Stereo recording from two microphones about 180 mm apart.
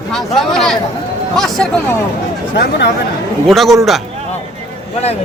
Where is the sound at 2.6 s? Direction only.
75° left (ahead or behind).